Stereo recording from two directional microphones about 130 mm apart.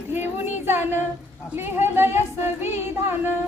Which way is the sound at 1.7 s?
15° right (ahead or behind).